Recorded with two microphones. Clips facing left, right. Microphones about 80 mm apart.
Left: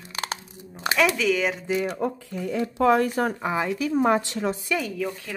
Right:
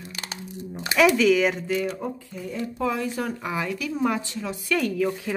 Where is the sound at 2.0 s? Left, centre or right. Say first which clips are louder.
Left 4 dB; left.